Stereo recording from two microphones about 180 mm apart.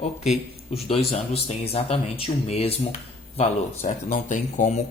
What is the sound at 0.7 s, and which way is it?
Speech, 35° left (ahead or behind).